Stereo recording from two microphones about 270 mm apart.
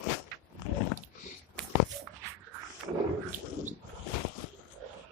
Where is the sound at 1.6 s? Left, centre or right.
Centre.